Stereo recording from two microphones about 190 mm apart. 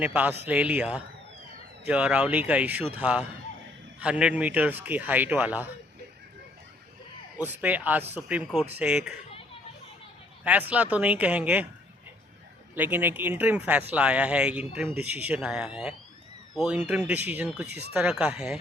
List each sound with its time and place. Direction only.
0.0 s speech: 10° right (ahead or behind)
7.4 s speech: 10° right (ahead or behind)
10.4 s speech: 10° right (ahead or behind)
12.7 s speech: 10° right (ahead or behind)
17.7 s speech: 60° right (ahead or behind)
17.9 s speech: 5° right (ahead or behind)